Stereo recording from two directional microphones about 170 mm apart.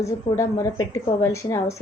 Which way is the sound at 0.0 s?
15° left (ahead or behind).